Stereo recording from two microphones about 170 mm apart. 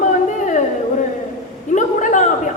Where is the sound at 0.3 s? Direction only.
45° left (ahead or behind).